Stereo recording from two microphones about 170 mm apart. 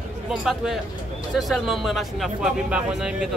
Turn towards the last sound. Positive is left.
turn(degrees=-5)  # may be behind; listen again after turning